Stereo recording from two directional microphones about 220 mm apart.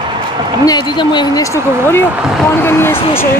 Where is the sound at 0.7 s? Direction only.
20° left (ahead or behind).